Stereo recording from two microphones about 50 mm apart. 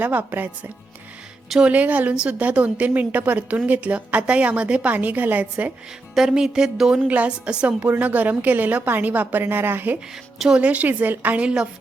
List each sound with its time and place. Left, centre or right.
0.0 s a woman's voice: right
1.7 s a woman's voice: right
6.1 s speech: centre
7.1 s a woman's voice: right
7.8 s a woman's voice: right
10.6 s a woman's voice: right